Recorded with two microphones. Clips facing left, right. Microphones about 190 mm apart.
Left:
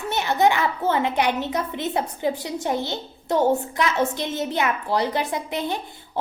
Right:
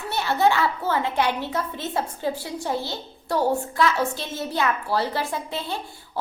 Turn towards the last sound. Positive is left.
turn(degrees=15)  # may be behind; listen again after turning